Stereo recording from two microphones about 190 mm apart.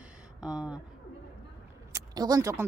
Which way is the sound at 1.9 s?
20° right (ahead or behind).